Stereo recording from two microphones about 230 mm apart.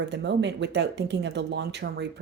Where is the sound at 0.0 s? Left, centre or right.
Right.